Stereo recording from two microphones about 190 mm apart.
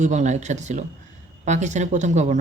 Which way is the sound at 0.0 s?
40° right (ahead or behind).